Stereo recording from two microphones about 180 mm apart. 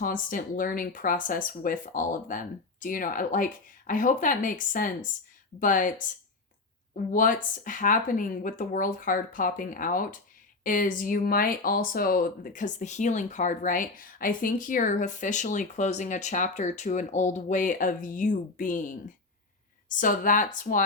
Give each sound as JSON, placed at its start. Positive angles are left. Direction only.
{"t": 0.0, "sound": "speech", "side_deg": 50}
{"t": 7.1, "sound": "speech", "side_deg": 50}